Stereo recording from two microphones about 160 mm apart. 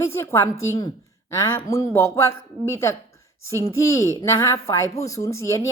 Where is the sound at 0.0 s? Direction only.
15° left (ahead or behind).